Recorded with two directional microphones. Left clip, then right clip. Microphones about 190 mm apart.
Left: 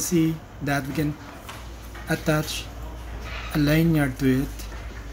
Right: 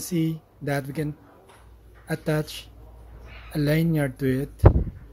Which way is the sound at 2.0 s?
40° right (ahead or behind).